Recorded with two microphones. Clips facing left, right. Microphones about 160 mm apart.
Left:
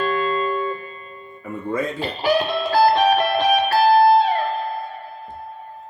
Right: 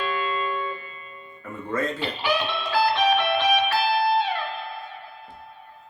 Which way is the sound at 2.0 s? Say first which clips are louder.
Left 6 dB; 40° left (ahead or behind).